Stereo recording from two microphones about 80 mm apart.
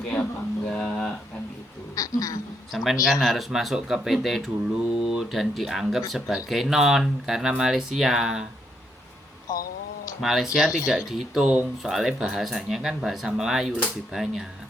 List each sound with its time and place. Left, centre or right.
0.7 s speech: centre
2.0 s speech: left
2.7 s speech: centre
9.5 s speech: left
10.2 s speech: centre